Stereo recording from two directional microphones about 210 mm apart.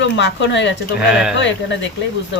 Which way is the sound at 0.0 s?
60° left (ahead or behind).